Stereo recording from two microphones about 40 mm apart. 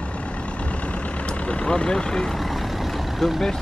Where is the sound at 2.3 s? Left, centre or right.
Centre.